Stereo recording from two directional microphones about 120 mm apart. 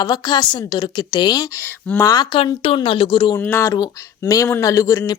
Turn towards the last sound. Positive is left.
turn(degrees=30)  # may be behind; listen again after turning